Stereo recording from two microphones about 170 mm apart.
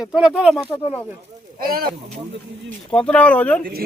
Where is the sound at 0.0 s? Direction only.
5° right (ahead or behind).